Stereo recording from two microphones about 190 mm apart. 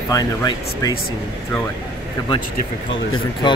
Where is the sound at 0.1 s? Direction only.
20° left (ahead or behind).